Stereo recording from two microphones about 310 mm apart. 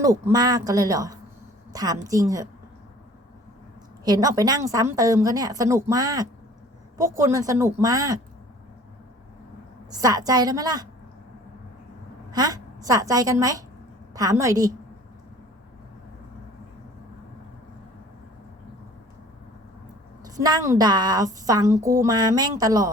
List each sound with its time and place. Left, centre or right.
0.0 s a woman's voice: centre
4.0 s a woman's voice: centre
10.0 s a woman's voice: centre
12.3 s a woman's voice: centre
20.2 s a woman's voice: centre